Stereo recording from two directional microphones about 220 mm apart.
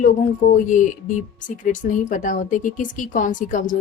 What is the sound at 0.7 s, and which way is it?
Speech, 35° left (ahead or behind).